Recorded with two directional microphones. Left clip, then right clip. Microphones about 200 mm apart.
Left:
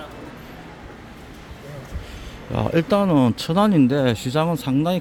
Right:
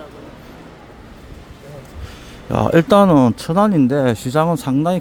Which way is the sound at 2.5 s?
25° right (ahead or behind).